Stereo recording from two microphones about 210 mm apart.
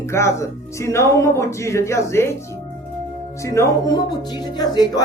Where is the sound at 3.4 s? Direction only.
15° left (ahead or behind).